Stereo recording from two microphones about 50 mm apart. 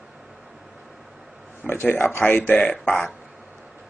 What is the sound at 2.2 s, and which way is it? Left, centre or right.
Speech, left.